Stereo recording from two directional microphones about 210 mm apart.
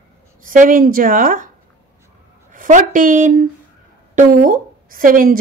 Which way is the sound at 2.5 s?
40° right (ahead or behind).